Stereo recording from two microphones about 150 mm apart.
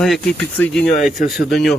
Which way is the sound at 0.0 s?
5° left (ahead or behind).